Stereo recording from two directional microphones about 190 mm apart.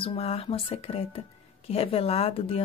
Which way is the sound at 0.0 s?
30° left (ahead or behind).